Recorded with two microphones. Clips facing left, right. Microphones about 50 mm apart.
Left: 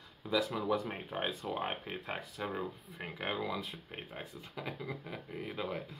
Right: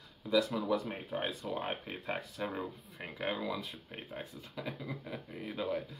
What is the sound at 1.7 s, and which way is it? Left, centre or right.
Speech, centre.